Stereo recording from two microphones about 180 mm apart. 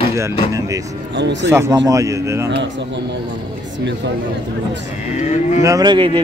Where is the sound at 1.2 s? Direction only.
80° right.